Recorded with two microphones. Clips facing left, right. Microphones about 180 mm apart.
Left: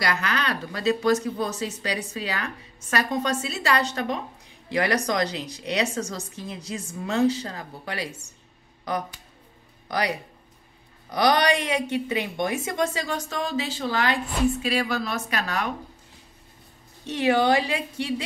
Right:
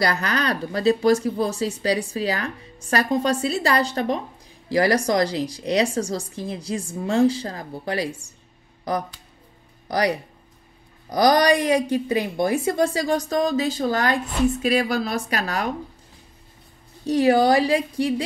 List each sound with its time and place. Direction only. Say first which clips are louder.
0.0 s a woman's voice: right 4 dB; 40° right (ahead or behind)
9.8 s a woman's voice: right 5 dB; 35° right (ahead or behind)
17.0 s a woman's voice: right 5 dB; 35° right (ahead or behind)